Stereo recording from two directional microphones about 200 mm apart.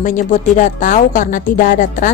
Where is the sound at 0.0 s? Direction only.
40° left (ahead or behind).